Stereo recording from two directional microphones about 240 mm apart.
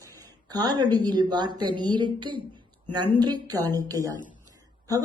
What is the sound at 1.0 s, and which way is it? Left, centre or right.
A woman's voice, centre.